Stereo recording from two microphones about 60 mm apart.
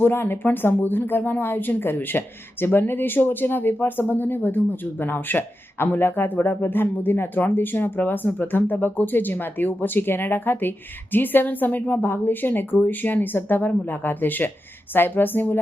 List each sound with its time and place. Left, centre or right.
0.0 s speech: left